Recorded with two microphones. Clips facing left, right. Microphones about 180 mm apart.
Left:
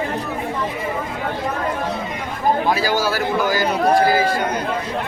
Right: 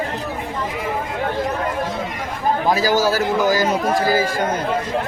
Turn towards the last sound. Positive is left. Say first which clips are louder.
# right 2 dB
turn(degrees=-40)  # may be behind; listen again after turning